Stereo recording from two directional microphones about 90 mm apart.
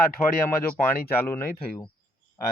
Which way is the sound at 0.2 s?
30° left (ahead or behind).